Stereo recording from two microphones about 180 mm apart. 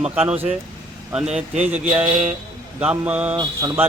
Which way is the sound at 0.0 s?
5° right (ahead or behind).